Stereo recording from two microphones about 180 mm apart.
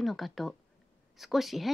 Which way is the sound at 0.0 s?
Centre (ahead or behind).